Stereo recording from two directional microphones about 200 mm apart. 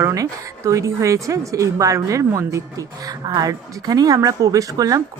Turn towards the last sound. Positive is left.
turn(degrees=-15)  # may be behind; listen again after turning